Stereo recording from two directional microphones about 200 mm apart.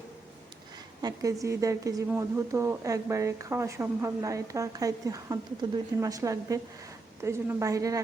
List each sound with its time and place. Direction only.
1.0 s speech: 15° right (ahead or behind)